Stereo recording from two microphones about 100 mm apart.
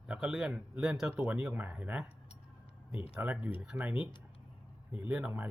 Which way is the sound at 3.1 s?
15° right (ahead or behind).